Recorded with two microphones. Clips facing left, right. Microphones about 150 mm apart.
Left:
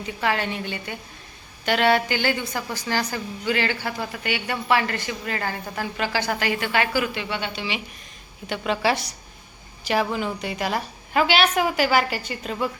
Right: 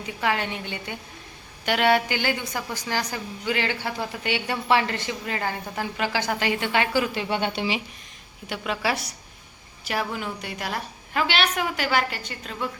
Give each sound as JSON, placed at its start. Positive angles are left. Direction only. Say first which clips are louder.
{"t": 0.2, "sound": "a woman's voice", "louder": "left 1 dB", "side_deg": -15}
{"t": 4.2, "sound": "a woman's voice", "louder": "right 1 dB", "side_deg": -30}
{"t": 8.4, "sound": "a woman's voice", "louder": "left 4 dB", "side_deg": -5}